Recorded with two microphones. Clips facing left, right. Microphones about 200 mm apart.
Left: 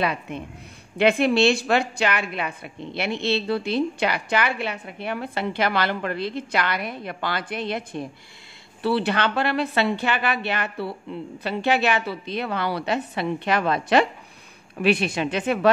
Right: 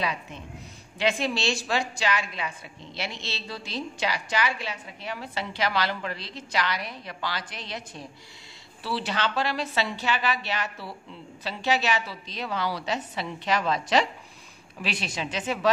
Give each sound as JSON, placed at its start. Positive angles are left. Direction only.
{"t": 0.0, "sound": "a woman's voice", "side_deg": 60}